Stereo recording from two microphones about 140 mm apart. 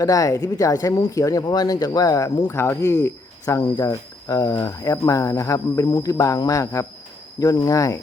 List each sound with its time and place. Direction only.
0.0 s speech: 25° left (ahead or behind)